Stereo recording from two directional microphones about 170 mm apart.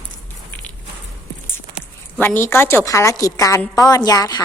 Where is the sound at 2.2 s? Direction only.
10° left (ahead or behind).